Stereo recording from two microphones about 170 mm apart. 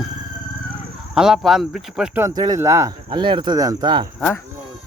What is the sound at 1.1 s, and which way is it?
Speech, 5° right (ahead or behind).